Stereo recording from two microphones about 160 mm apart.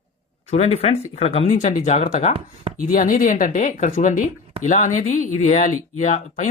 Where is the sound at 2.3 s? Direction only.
35° right (ahead or behind).